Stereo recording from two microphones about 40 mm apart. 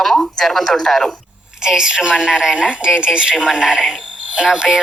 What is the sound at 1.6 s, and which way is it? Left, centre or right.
A woman's voice, centre.